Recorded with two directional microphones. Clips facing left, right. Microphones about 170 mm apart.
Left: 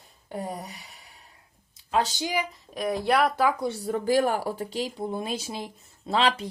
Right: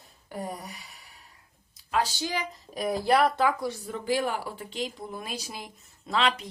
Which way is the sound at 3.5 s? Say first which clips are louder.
Left 3 dB; 25° left (ahead or behind).